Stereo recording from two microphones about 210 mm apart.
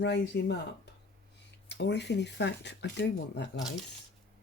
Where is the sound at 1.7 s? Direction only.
55° left (ahead or behind).